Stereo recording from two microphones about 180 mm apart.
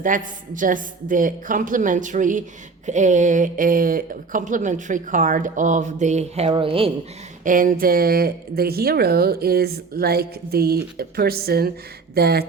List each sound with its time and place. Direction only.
0.0 s speech: 45° right (ahead or behind); by 6.9 s 30° right (ahead or behind)
7.4 s speech: 50° right (ahead or behind)